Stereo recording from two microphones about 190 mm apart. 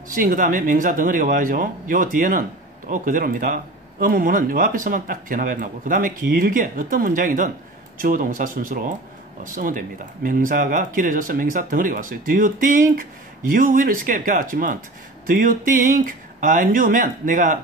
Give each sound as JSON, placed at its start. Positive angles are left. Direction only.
{"t": 0.1, "sound": "speech", "side_deg": -45}